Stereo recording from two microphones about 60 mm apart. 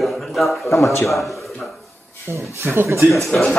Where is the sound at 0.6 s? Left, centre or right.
Left.